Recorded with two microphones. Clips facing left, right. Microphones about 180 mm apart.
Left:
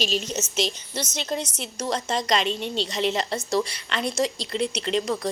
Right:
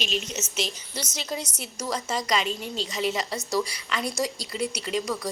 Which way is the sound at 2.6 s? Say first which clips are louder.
Left 4 dB; 85° left.